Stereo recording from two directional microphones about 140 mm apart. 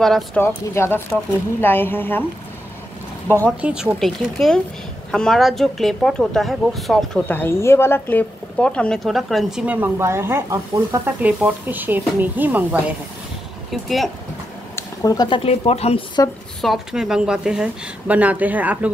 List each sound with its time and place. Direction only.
0.0 s a woman's voice: 5° left (ahead or behind)
0.4 s speech: 15° left (ahead or behind)
3.6 s a woman's voice: 5° right (ahead or behind)
7.2 s speech: 15° left (ahead or behind); by 9.6 s centre (ahead or behind)
9.7 s a woman's voice: 15° right (ahead or behind)
13.7 s a woman's voice: centre (ahead or behind)
14.8 s speech: 25° left (ahead or behind); by 16.0 s 45° left (ahead or behind)
16.6 s a woman's voice: 5° right (ahead or behind)